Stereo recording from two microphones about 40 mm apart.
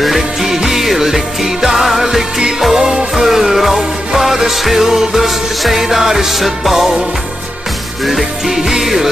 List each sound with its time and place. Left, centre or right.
0.0 s music: centre
8.0 s music: centre